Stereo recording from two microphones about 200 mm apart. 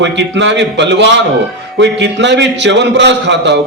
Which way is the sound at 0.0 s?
60° right (ahead or behind).